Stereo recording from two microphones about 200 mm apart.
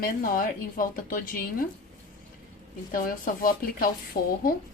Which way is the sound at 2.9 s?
45° left (ahead or behind).